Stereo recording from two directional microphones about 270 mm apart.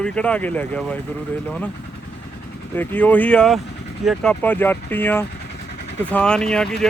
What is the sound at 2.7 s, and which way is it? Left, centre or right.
Speech, centre.